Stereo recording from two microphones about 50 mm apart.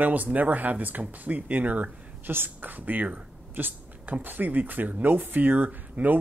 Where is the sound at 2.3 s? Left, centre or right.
Right.